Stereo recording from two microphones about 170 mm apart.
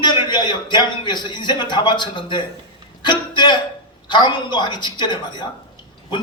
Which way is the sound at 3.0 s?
25° left (ahead or behind).